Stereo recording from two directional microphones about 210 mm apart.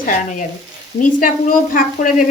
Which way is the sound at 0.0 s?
35° left (ahead or behind).